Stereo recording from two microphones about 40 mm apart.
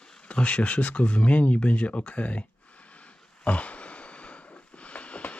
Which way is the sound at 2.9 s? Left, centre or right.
Left.